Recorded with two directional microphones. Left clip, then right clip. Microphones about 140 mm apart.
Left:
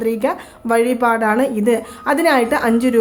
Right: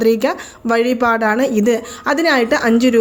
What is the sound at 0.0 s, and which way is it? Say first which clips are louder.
A woman's voice: right 4 dB; 30° right (ahead or behind).